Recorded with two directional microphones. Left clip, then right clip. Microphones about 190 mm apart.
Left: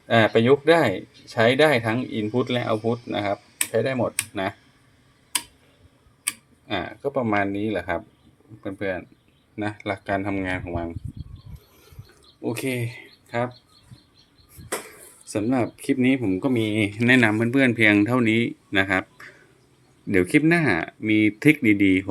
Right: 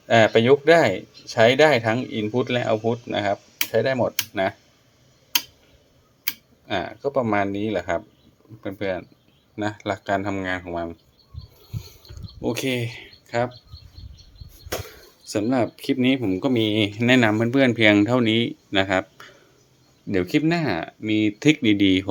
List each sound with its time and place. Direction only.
0.1 s speech: centre (ahead or behind)
6.7 s speech: 5° left (ahead or behind)
12.4 s speech: 15° right (ahead or behind)
15.2 s speech: centre (ahead or behind)
20.3 s speech: 15° left (ahead or behind); by 22.0 s 5° right (ahead or behind)